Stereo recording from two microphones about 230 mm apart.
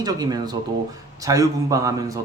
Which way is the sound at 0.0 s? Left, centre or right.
Centre.